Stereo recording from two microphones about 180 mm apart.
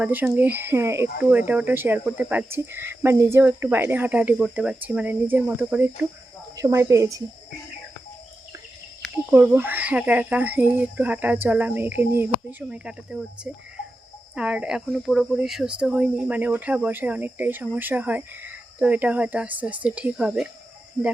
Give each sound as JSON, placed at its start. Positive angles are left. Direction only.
{"t": 0.0, "sound": "speech", "side_deg": -10}
{"t": 9.3, "sound": "speech", "side_deg": -10}